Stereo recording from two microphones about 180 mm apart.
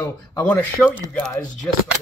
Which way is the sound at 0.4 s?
5° left (ahead or behind).